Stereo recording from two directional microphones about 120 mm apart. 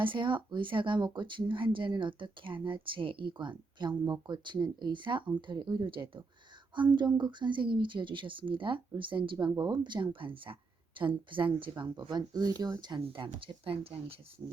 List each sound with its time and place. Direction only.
0.0 s speech: 40° right (ahead or behind)